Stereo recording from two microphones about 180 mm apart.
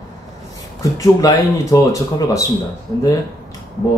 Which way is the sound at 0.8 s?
20° left (ahead or behind).